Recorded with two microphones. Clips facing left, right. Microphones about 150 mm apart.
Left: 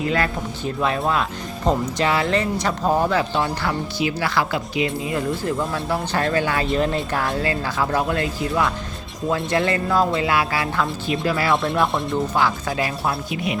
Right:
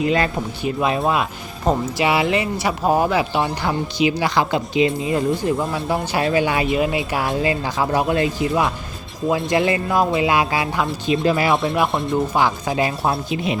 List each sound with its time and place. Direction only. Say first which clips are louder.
0.0 s speech: right 3 dB; 20° right (ahead or behind)
11.5 s speech: right 1 dB; centre (ahead or behind)
12.3 s speech: right 2 dB; 20° right (ahead or behind)